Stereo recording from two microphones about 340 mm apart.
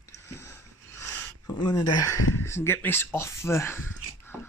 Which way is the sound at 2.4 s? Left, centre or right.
Centre.